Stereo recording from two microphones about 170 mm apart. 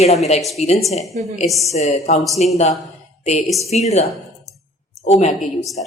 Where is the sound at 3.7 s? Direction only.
40° left (ahead or behind).